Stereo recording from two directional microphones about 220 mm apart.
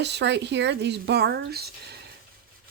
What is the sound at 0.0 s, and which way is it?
Speech, 50° right (ahead or behind).